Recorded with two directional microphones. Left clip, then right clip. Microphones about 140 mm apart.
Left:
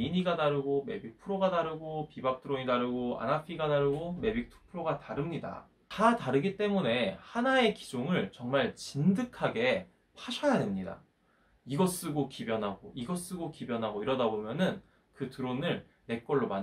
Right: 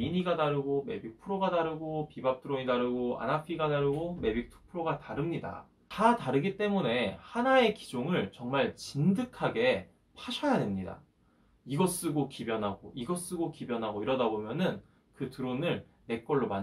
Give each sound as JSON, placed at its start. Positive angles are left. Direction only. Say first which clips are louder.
{"t": 0.0, "sound": "speech", "louder": "even", "side_deg": 25}